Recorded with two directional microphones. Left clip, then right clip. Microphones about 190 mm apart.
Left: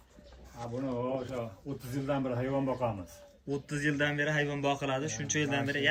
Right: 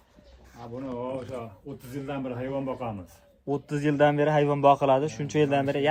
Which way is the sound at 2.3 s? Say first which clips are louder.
Right 1 dB; 45° right (ahead or behind).